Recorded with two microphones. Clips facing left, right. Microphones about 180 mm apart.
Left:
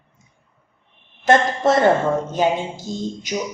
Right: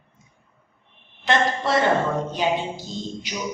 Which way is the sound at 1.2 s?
45° left (ahead or behind).